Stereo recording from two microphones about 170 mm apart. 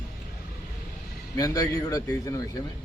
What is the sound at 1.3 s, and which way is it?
A man's voice, 20° left (ahead or behind).